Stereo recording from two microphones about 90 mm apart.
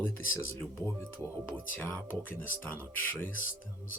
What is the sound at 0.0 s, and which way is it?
Speech, 25° left (ahead or behind).